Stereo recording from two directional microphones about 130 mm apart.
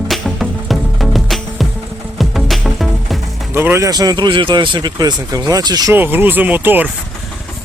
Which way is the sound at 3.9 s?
30° right (ahead or behind).